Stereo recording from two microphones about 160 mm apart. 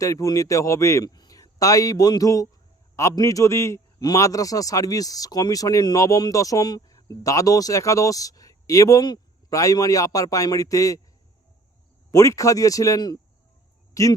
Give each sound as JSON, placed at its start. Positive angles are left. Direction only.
{"t": 0.0, "sound": "a man's voice", "side_deg": 20}
{"t": 12.1, "sound": "a man's voice", "side_deg": 20}